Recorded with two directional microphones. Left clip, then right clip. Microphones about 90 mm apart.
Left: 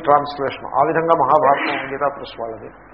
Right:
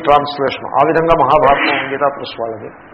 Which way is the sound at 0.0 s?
25° left (ahead or behind).